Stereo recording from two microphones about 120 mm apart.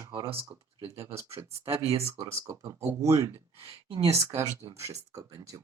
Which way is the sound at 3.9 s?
55° right (ahead or behind).